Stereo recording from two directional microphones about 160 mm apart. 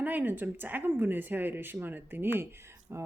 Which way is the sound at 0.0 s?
10° right (ahead or behind).